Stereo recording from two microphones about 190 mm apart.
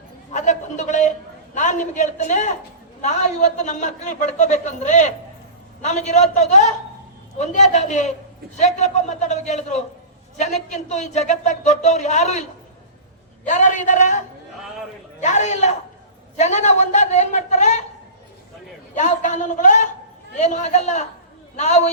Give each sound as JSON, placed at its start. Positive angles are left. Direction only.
{"t": 0.3, "sound": "a sound", "side_deg": 40}
{"t": 1.5, "sound": "a man's voice", "side_deg": 40}
{"t": 18.9, "sound": "a man's voice", "side_deg": 40}